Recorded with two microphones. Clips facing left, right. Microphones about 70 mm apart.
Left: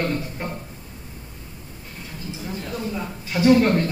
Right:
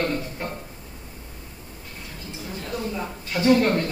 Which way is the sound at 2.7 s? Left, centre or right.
Centre.